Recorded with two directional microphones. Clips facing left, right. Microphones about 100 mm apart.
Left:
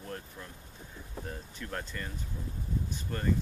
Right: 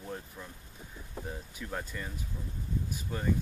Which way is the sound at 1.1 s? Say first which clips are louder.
Right 1 dB; 10° right (ahead or behind).